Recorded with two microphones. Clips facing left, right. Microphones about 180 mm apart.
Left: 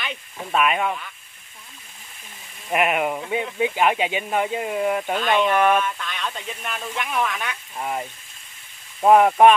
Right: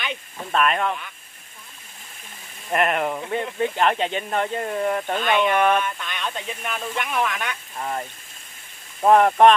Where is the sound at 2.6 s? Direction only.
5° left (ahead or behind).